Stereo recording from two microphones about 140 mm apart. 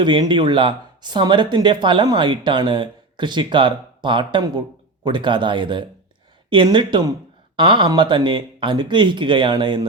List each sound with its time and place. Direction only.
0.0 s speech: 35° right (ahead or behind)